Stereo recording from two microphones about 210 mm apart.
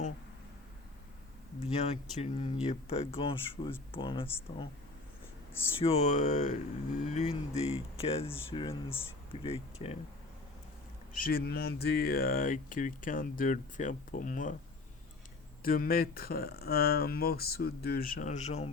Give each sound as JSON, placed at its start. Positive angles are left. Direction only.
{"t": 1.6, "sound": "speech", "side_deg": 30}
{"t": 5.8, "sound": "speech", "side_deg": 30}
{"t": 11.1, "sound": "speech", "side_deg": 45}
{"t": 15.6, "sound": "speech", "side_deg": 45}